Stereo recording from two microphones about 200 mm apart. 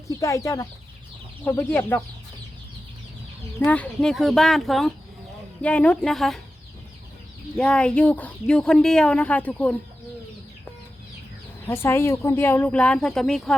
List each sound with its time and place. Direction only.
0.2 s speech: 15° left (ahead or behind)
3.7 s speech: 5° left (ahead or behind)
7.5 s speech: 5° left (ahead or behind)
11.6 s speech: 10° left (ahead or behind)